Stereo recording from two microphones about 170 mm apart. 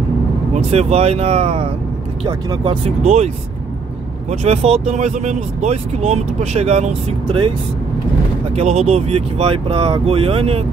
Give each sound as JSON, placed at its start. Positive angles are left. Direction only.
{"t": 0.6, "sound": "speech", "side_deg": -40}
{"t": 3.0, "sound": "speech", "side_deg": -40}
{"t": 4.3, "sound": "speech", "side_deg": -40}
{"t": 8.5, "sound": "speech", "side_deg": -40}